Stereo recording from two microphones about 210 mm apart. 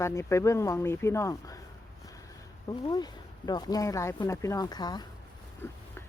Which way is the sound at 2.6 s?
20° left (ahead or behind).